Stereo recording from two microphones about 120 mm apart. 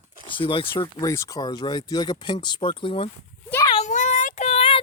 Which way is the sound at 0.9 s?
25° left (ahead or behind).